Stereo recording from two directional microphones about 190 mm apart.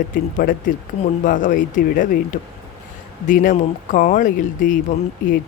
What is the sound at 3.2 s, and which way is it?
Speech, 45° left (ahead or behind).